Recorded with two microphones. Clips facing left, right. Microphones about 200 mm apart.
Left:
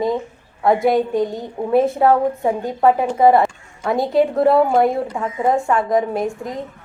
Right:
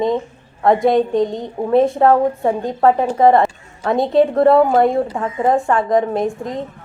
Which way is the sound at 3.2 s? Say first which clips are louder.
Right 1 dB; 5° left (ahead or behind).